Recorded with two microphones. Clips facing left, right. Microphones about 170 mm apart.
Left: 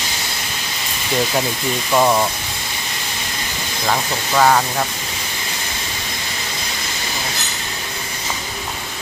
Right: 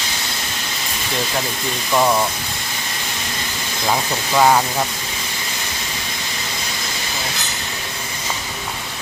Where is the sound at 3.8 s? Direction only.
10° right (ahead or behind).